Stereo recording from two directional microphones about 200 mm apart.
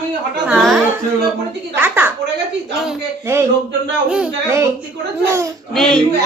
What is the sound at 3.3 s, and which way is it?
A woman's voice, 15° right (ahead or behind).